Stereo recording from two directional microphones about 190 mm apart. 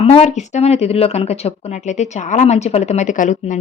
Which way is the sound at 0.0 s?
30° left (ahead or behind).